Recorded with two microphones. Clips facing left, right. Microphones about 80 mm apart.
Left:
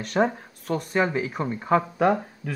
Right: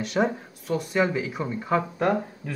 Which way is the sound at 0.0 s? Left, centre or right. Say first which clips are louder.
Left 1 dB; left.